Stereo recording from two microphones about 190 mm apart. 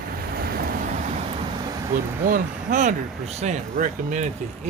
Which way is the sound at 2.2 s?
45° right (ahead or behind).